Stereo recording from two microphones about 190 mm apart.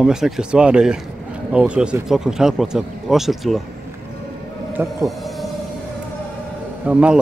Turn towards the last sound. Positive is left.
turn(degrees=-5)  # may be behind; listen again after turning